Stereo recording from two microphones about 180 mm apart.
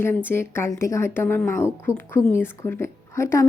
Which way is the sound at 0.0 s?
10° left (ahead or behind).